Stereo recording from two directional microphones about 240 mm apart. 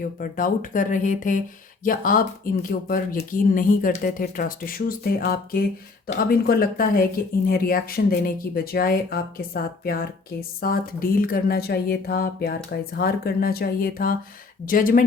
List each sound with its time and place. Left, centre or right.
0.0 s speech: left